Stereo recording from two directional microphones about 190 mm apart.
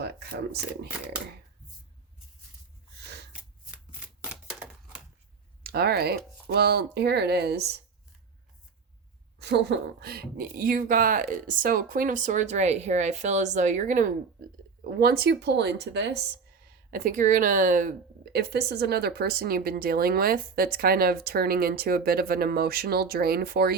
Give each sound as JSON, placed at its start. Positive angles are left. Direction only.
{"t": 0.0, "sound": "speech", "side_deg": -60}
{"t": 5.6, "sound": "speech", "side_deg": -55}
{"t": 9.4, "sound": "a woman's voice", "side_deg": -60}
{"t": 14.8, "sound": "speech", "side_deg": -55}
{"t": 16.9, "sound": "a woman's voice", "side_deg": -45}